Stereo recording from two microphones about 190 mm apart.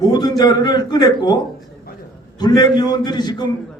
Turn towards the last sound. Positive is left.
turn(degrees=20)  # may be behind; listen again after turning